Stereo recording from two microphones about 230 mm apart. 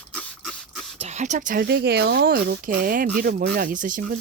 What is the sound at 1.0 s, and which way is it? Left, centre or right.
Speech, right.